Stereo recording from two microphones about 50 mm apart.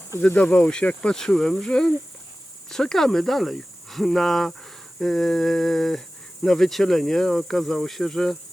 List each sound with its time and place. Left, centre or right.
0.3 s cricket: left
1.0 s speech: centre